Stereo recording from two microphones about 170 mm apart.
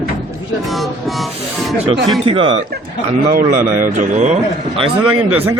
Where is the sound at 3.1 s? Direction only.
50° right (ahead or behind).